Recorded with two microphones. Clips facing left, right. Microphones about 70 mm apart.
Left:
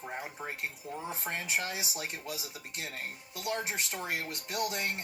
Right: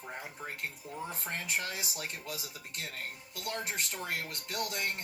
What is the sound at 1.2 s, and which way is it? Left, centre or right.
Speech, left.